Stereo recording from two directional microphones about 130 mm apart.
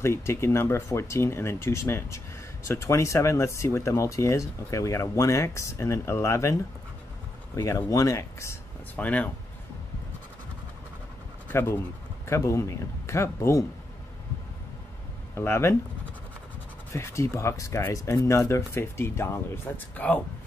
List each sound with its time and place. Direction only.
0.0 s speech: 20° left (ahead or behind)
8.9 s speech: 10° left (ahead or behind)
11.4 s speech: 20° left (ahead or behind)
15.3 s speech: 20° left (ahead or behind)
16.9 s speech: 20° left (ahead or behind)